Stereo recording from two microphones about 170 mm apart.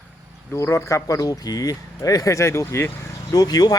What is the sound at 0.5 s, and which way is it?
Speech, 15° left (ahead or behind).